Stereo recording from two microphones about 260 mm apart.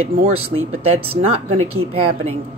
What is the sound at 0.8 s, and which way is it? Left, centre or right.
Speech, right.